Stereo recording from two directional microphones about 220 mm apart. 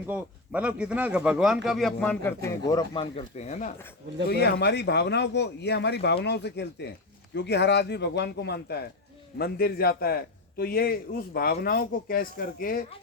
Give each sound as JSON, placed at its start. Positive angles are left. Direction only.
{"t": 0.1, "sound": "a man's voice", "side_deg": -5}
{"t": 4.3, "sound": "a man's voice", "side_deg": 50}